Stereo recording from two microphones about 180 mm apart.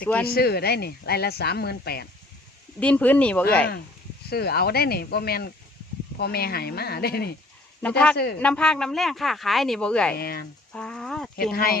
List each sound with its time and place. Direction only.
0.0 s speech: 5° left (ahead or behind)
0.3 s speech: 60° left (ahead or behind)
2.8 s speech: 10° left (ahead or behind)
4.3 s speech: 60° left (ahead or behind)
7.8 s speech: 5° left (ahead or behind)
8.1 s speech: 65° left (ahead or behind)
8.4 s speech: 5° left (ahead or behind)
10.2 s speech: 60° left (ahead or behind)
10.7 s a sound: 5° left (ahead or behind)
11.5 s speech: 55° left (ahead or behind)